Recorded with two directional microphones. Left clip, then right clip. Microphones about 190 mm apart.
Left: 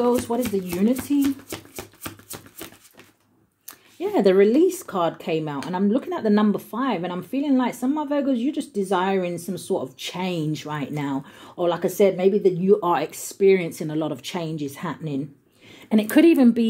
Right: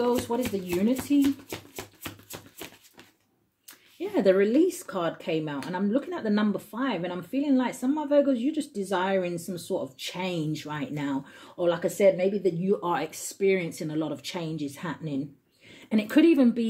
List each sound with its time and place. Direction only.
0.0 s speech: 25° left (ahead or behind)
1.2 s music: 20° left (ahead or behind)
4.0 s speech: 35° left (ahead or behind)